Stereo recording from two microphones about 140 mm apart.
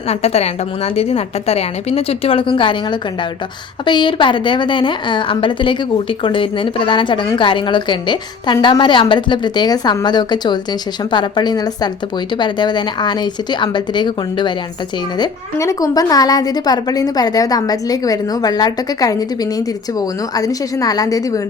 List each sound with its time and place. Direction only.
0.1 s a woman's voice: 50° left (ahead or behind); by 21.4 s 25° left (ahead or behind)